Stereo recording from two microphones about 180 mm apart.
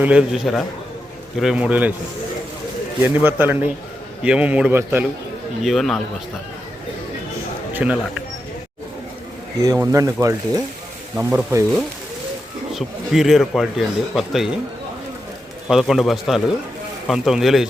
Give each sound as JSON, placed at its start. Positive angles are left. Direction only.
{"t": 0.0, "sound": "a man's voice", "side_deg": -5}
{"t": 3.0, "sound": "a man's voice", "side_deg": -10}
{"t": 5.6, "sound": "speech", "side_deg": 0}
{"t": 7.7, "sound": "speech", "side_deg": -10}
{"t": 9.8, "sound": "speech", "side_deg": -20}
{"t": 11.2, "sound": "speech", "side_deg": -5}
{"t": 12.7, "sound": "speech", "side_deg": 0}
{"t": 15.7, "sound": "speech", "side_deg": 0}